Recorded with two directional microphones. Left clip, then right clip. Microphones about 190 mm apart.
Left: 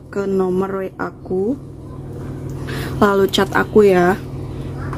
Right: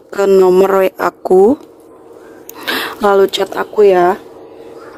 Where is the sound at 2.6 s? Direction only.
45° right (ahead or behind); by 4.2 s 25° right (ahead or behind).